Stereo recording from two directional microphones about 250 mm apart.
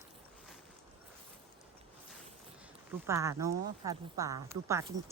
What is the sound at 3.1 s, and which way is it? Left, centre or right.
A woman's voice, centre.